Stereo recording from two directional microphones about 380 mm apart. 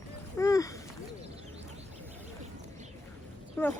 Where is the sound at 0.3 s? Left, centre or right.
Centre.